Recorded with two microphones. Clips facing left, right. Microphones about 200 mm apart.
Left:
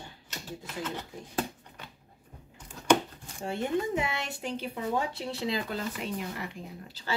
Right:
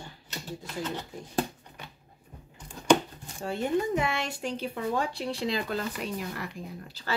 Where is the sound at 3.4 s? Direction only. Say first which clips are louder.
Right 2 dB; 25° left (ahead or behind).